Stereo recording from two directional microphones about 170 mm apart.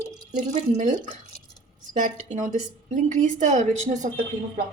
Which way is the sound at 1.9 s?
45° right (ahead or behind).